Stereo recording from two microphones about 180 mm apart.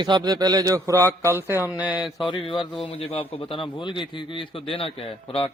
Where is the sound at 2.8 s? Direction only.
35° left (ahead or behind).